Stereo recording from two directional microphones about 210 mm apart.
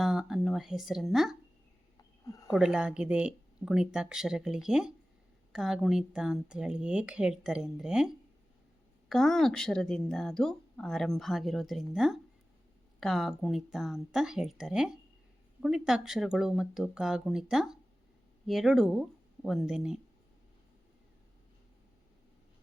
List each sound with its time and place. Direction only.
0.0 s a woman's voice: centre (ahead or behind)
2.0 s a sound: 15° left (ahead or behind)
2.5 s a woman's voice: 5° right (ahead or behind)